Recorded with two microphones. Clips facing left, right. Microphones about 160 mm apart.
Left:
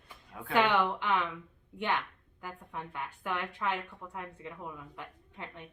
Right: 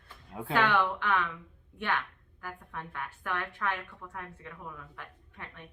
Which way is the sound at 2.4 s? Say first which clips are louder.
Even; 20° left (ahead or behind).